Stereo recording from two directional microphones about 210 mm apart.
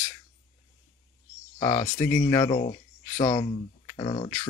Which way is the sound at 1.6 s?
20° left (ahead or behind).